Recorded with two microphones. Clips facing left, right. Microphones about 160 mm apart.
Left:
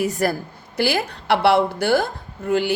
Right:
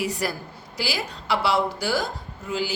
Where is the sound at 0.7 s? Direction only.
60° left (ahead or behind).